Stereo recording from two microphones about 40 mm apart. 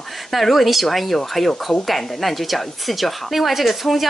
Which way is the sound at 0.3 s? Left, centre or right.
Centre.